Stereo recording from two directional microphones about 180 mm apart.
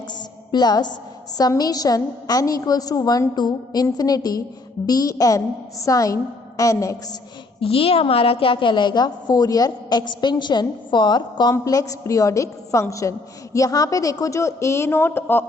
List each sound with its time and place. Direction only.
0.1 s music: 25° left (ahead or behind)
1.4 s a woman's voice: 20° left (ahead or behind)
7.6 s a woman's voice: 30° left (ahead or behind); by 15.4 s 10° left (ahead or behind)